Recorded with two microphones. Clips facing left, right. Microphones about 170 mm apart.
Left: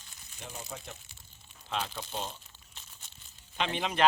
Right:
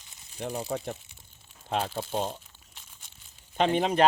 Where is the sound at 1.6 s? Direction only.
50° right (ahead or behind).